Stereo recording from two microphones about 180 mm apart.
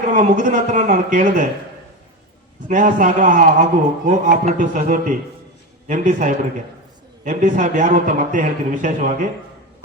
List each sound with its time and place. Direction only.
0.1 s a man's voice: 45° right (ahead or behind)
2.6 s a man's voice: 45° right (ahead or behind)